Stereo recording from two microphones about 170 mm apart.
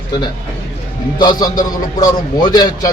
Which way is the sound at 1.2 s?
25° left (ahead or behind).